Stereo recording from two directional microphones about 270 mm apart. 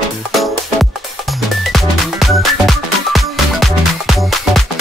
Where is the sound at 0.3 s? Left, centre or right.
Centre.